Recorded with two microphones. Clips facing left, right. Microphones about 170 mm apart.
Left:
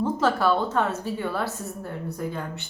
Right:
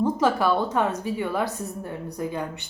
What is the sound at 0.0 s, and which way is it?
A woman's voice, 15° right (ahead or behind).